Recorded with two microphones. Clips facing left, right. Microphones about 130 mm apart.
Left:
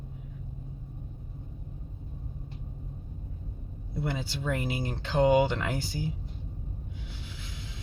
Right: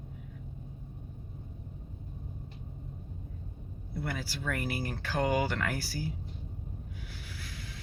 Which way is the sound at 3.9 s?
20° left (ahead or behind).